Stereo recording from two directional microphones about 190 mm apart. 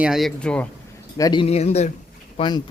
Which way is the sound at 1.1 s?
20° left (ahead or behind).